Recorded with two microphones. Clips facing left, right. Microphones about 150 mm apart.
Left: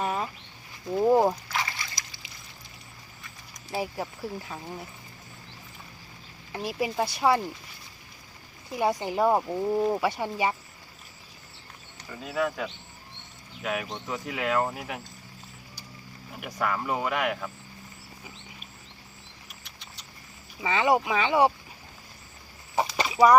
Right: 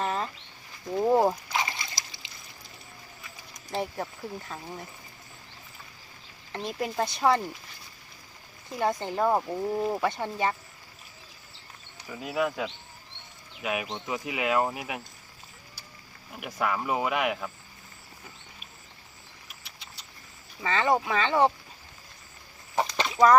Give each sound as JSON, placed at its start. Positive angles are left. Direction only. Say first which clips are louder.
{"t": 0.0, "sound": "a sound", "louder": "even", "side_deg": 10}
{"t": 1.5, "sound": "splash", "louder": "right 2 dB", "side_deg": -20}
{"t": 3.5, "sound": "speech", "louder": "even", "side_deg": 5}
{"t": 6.5, "sound": "speech", "louder": "left 2 dB", "side_deg": 5}
{"t": 8.7, "sound": "speech", "louder": "left 2 dB", "side_deg": 10}
{"t": 11.9, "sound": "speech", "louder": "even", "side_deg": -10}
{"t": 16.3, "sound": "speech", "louder": "even", "side_deg": -5}
{"t": 20.6, "sound": "speech", "louder": "left 2 dB", "side_deg": 10}
{"t": 22.7, "sound": "a sound", "louder": "left 1 dB", "side_deg": 5}